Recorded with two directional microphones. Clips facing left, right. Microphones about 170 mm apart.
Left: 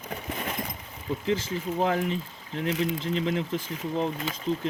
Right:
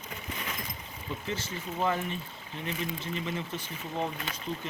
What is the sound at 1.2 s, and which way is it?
Speech, 90° left.